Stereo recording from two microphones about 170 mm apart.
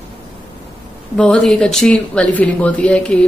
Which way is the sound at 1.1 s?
5° left (ahead or behind).